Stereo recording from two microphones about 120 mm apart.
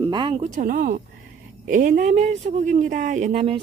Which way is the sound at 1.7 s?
90° right.